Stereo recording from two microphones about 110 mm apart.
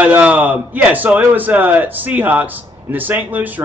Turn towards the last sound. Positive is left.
turn(degrees=-15)  # may be behind; listen again after turning